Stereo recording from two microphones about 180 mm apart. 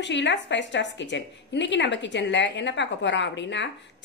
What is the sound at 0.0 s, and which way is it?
A woman's voice, 80° left.